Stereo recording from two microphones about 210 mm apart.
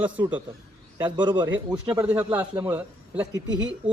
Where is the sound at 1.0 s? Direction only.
20° right (ahead or behind).